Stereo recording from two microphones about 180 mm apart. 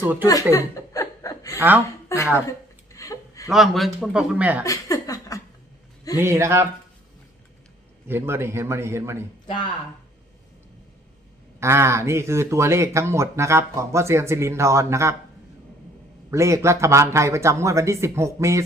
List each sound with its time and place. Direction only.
0.0 s speech: 10° right (ahead or behind)
0.5 s chuckle: 20° left (ahead or behind)
1.5 s speech: 10° right (ahead or behind)
2.1 s speech: 15° left (ahead or behind)
2.5 s a sound: 15° left (ahead or behind)
3.5 s speech: centre (ahead or behind)
4.6 s a sound: 20° left (ahead or behind)
6.1 s speech: 15° right (ahead or behind)
8.0 s speech: 15° right (ahead or behind)
11.6 s speech: 15° right (ahead or behind)
16.3 s speech: 15° right (ahead or behind)